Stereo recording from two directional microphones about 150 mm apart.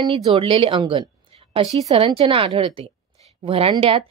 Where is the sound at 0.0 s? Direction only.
40° right (ahead or behind).